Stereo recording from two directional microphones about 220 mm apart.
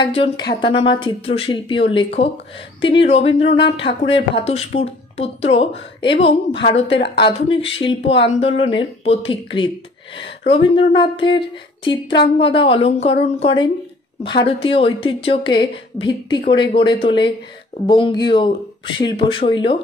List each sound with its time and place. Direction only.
0.0 s speech: 25° left (ahead or behind)
3.3 s speech: 25° left (ahead or behind)